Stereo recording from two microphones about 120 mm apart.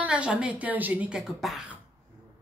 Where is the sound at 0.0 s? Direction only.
10° right (ahead or behind).